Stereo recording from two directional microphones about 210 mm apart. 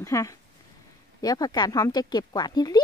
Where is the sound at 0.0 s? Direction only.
15° left (ahead or behind).